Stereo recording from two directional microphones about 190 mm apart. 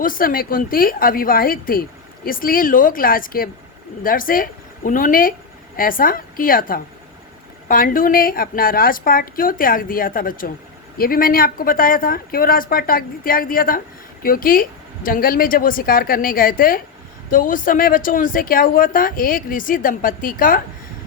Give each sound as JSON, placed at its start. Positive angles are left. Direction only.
{"t": 0.0, "sound": "speech", "side_deg": 50}